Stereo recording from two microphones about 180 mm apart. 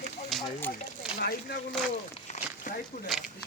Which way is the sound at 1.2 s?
60° left (ahead or behind).